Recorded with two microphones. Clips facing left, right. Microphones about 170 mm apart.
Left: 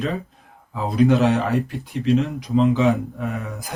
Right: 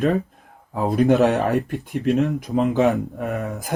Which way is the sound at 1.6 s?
60° right (ahead or behind).